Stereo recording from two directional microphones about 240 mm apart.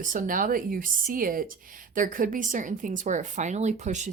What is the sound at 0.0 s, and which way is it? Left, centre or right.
A woman's voice, right.